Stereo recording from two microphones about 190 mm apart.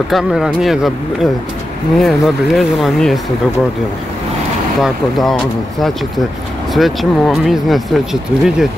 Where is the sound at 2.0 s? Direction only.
Centre (ahead or behind).